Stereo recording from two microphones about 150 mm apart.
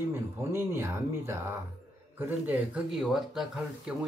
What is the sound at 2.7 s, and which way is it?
Speech, centre (ahead or behind).